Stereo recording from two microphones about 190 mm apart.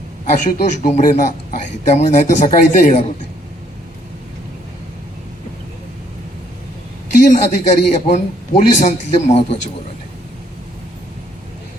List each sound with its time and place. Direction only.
0.3 s a man's voice: 45° left (ahead or behind)
7.3 s a man's voice: 40° left (ahead or behind)